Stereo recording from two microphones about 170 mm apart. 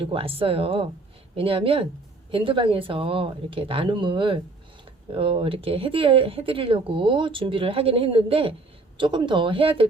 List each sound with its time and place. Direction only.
0.0 s speech: 35° right (ahead or behind)